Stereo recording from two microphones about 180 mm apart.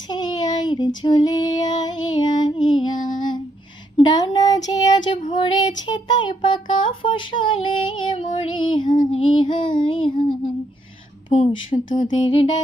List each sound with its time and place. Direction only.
0.1 s a sound: 25° left (ahead or behind)
1.0 s female singing: 25° left (ahead or behind)
3.9 s a sound: 20° left (ahead or behind)
5.4 s child singing: 25° left (ahead or behind)
11.3 s speech: 35° left (ahead or behind)
11.9 s music: 45° left (ahead or behind)